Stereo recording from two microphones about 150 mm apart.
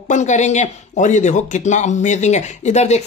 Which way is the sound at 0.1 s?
55° left (ahead or behind).